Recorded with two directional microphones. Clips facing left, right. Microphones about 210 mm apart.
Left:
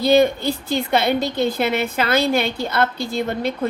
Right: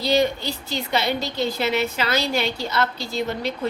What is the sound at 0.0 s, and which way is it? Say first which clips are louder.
A woman's voice: left 5 dB; 55° left (ahead or behind).